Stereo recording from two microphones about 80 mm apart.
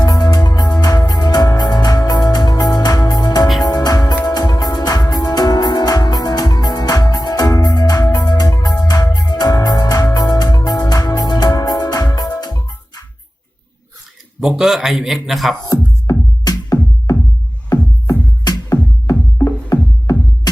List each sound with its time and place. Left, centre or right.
0.0 s music: left
14.4 s speech: centre
15.6 s music: left
18.4 s music: left